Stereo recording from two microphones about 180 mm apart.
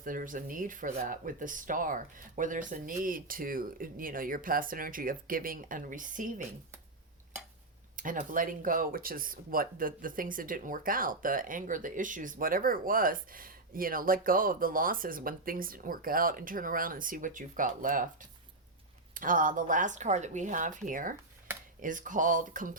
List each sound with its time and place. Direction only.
0.0 s speech: 50° right (ahead or behind)
7.9 s speech: 45° right (ahead or behind)
19.1 s speech: 50° right (ahead or behind)